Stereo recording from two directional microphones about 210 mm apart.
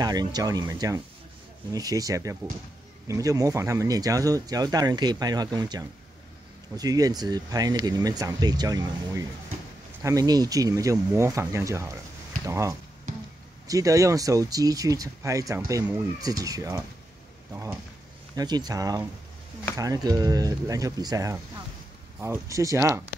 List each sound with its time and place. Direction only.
0.0 s speech: 20° right (ahead or behind)